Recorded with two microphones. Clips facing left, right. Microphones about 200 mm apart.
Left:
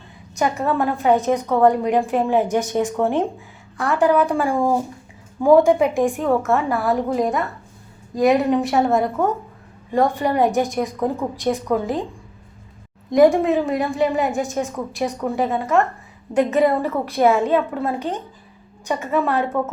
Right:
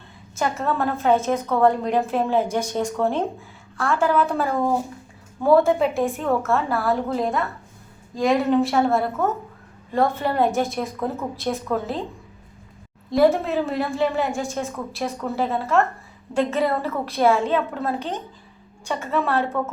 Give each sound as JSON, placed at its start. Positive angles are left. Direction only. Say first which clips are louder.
{"t": 0.4, "sound": "a woman's voice", "louder": "left 3 dB", "side_deg": 15}
{"t": 13.1, "sound": "a woman's voice", "louder": "left 4 dB", "side_deg": 15}